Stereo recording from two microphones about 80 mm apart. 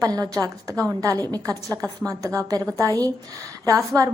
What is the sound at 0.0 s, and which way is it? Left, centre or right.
Speech, right.